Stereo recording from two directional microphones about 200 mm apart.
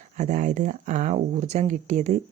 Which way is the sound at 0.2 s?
35° right (ahead or behind).